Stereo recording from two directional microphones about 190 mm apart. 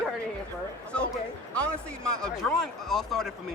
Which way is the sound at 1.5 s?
5° left (ahead or behind).